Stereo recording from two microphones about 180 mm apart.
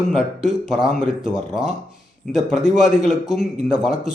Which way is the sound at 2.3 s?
Centre (ahead or behind).